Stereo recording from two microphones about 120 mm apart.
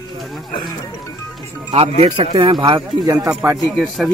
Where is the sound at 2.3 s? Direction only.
40° right (ahead or behind).